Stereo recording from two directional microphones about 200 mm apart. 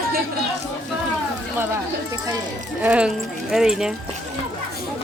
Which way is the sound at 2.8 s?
5° right (ahead or behind).